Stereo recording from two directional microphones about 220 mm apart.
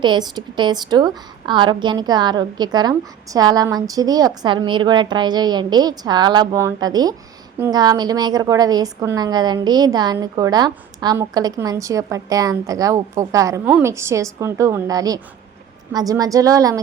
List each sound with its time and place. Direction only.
0.0 s a woman's voice: 20° right (ahead or behind)